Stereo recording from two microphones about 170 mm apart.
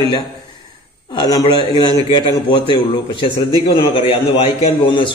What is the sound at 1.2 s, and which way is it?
Speech, 25° left (ahead or behind).